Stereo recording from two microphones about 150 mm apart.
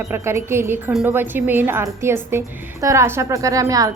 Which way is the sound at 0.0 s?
15° right (ahead or behind).